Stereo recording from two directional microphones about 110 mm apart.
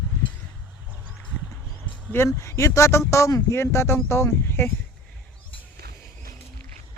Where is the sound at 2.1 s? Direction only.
25° left (ahead or behind).